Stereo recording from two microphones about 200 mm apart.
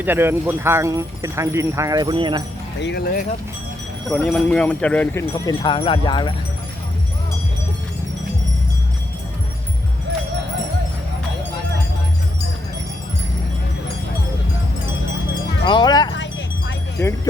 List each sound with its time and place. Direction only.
0.0 s speech: 10° right (ahead or behind)
2.8 s speech: 50° left (ahead or behind)
4.1 s speech: 5° left (ahead or behind)
5.5 s speech: 25° left (ahead or behind)
15.6 s wind chime: 20° left (ahead or behind)
16.1 s wind chime: 65° left (ahead or behind)
17.0 s speech: 10° left (ahead or behind)